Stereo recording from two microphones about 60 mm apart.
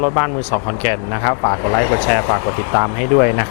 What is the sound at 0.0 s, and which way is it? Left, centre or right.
Speech, left.